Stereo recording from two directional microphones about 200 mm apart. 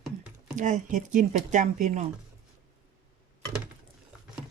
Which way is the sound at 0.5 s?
40° right (ahead or behind).